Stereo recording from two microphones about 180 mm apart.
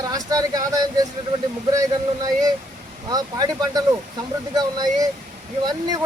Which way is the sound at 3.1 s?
20° right (ahead or behind).